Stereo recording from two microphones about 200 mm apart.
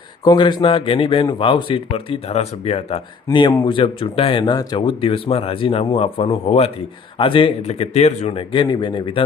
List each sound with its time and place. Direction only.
0.3 s speech: 25° left (ahead or behind)